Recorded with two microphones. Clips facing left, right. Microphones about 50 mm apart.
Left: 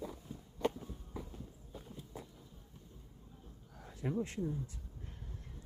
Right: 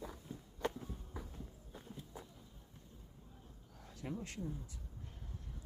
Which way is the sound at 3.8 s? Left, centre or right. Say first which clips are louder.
Left 6 dB; left.